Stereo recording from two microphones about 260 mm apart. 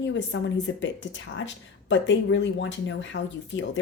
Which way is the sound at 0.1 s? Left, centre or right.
Left.